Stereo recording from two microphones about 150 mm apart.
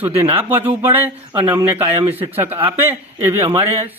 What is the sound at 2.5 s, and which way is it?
Speech, 35° right (ahead or behind).